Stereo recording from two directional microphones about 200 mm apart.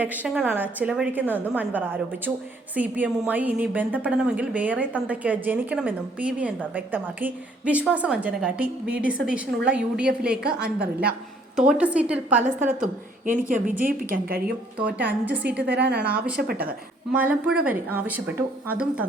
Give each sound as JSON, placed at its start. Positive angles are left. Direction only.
{"t": 0.0, "sound": "a woman's voice", "side_deg": -10}
{"t": 11.5, "sound": "a woman's voice", "side_deg": -5}
{"t": 12.6, "sound": "a woman's voice", "side_deg": -40}
{"t": 14.8, "sound": "a woman's voice", "side_deg": -5}
{"t": 15.5, "sound": "a woman's voice", "side_deg": -55}
{"t": 16.0, "sound": "a woman's voice", "side_deg": -5}
{"t": 16.4, "sound": "a woman's voice", "side_deg": -50}
{"t": 17.1, "sound": "a woman's voice", "side_deg": -5}